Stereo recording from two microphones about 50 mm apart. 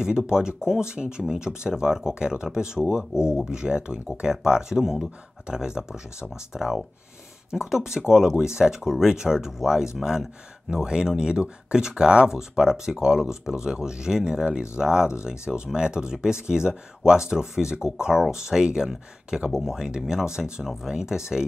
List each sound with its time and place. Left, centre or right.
0.3 s speech: centre